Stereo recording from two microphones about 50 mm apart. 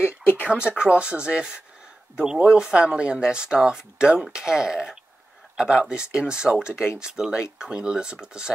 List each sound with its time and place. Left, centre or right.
0.2 s a sound: left
0.7 s speech: right
6.7 s speech: left
7.0 s speech: centre